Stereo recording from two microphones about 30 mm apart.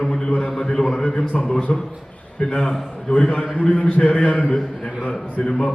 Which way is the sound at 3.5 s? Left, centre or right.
Left.